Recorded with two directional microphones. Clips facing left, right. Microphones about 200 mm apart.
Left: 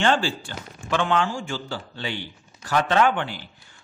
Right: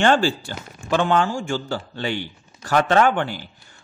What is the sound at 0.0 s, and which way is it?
A man's voice, 45° right (ahead or behind).